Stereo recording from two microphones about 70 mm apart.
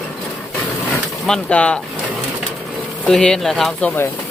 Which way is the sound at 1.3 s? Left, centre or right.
Centre.